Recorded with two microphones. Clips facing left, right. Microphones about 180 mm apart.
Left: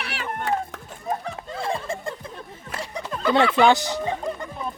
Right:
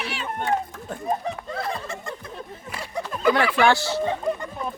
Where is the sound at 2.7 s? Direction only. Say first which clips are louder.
Even; 10° right (ahead or behind).